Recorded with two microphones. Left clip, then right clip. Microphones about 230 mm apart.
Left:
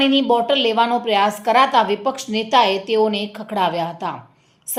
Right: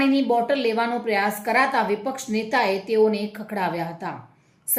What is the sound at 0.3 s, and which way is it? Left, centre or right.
Speech, centre.